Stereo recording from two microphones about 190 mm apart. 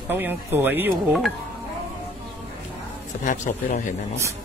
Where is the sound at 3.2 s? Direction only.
45° left (ahead or behind).